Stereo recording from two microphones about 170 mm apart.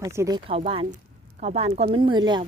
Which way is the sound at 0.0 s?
15° right (ahead or behind).